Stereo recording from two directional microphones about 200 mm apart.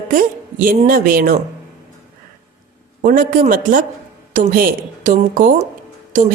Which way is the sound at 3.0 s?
45° right (ahead or behind).